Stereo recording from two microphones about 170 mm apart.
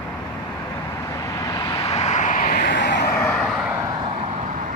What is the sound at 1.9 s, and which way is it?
Vehicle, 45° left (ahead or behind).